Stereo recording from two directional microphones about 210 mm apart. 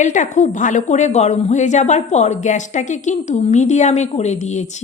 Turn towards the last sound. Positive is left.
turn(degrees=35)  # may be behind; listen again after turning